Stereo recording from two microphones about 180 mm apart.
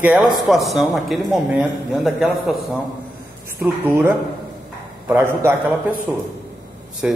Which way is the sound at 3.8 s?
15° right (ahead or behind).